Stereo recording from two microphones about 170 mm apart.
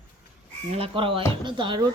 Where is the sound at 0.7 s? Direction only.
35° right (ahead or behind).